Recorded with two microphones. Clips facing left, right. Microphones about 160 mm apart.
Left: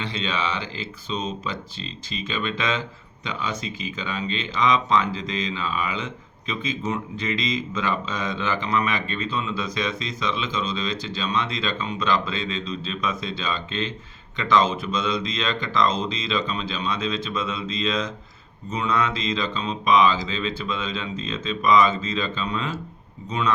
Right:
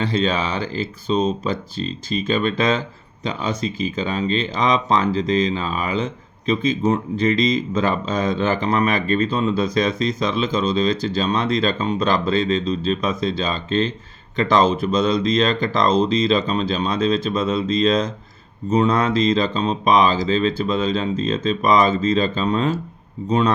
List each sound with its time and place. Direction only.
0.0 s speech: 40° right (ahead or behind)